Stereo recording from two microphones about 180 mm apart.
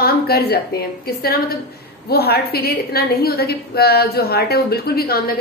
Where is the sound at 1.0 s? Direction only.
55° left (ahead or behind).